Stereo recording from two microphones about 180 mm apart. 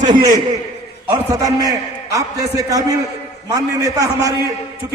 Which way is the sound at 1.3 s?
20° right (ahead or behind).